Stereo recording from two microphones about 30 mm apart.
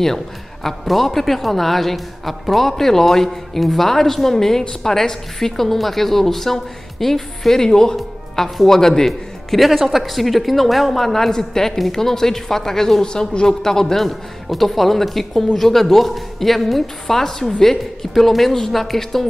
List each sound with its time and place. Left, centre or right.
0.7 s a woman's voice: centre
7.6 s a woman's voice: left
7.9 s speech: centre
9.6 s a woman's voice: centre
13.0 s a woman's voice: left
13.9 s a woman's voice: centre